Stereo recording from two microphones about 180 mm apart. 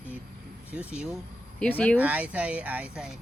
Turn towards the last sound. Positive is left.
turn(degrees=-5)  # may be behind; listen again after turning